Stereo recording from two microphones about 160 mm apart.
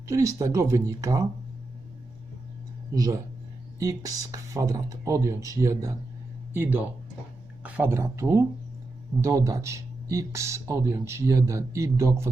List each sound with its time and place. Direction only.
0.1 s speech: 20° right (ahead or behind)
2.9 s speech: 20° right (ahead or behind)